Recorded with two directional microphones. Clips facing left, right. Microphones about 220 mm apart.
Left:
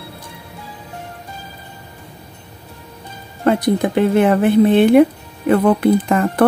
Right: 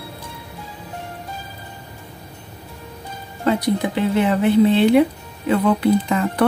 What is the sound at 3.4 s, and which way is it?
Speech, 55° left (ahead or behind).